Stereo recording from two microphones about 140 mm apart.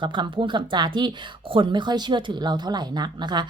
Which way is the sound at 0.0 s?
35° right (ahead or behind).